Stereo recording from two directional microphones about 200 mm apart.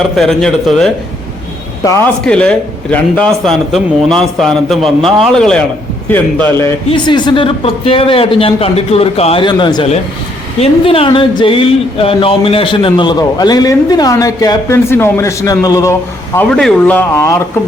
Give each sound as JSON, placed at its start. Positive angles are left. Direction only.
{"t": 0.2, "sound": "a man's voice", "side_deg": 5}
{"t": 2.2, "sound": "a man's voice", "side_deg": 5}
{"t": 6.9, "sound": "speech", "side_deg": 20}